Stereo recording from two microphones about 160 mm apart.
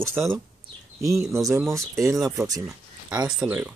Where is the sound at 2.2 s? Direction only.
20° right (ahead or behind).